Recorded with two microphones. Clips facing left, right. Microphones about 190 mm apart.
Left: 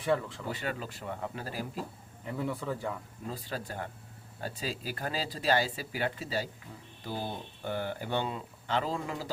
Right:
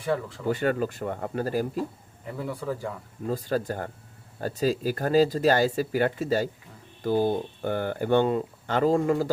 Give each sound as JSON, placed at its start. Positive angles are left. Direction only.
{"t": 0.0, "sound": "speech", "side_deg": 0}
{"t": 0.5, "sound": "speech", "side_deg": -50}
{"t": 2.2, "sound": "speech", "side_deg": 0}
{"t": 3.2, "sound": "speech", "side_deg": -45}